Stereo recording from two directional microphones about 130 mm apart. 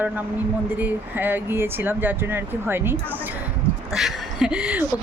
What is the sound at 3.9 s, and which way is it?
Speech, 5° right (ahead or behind).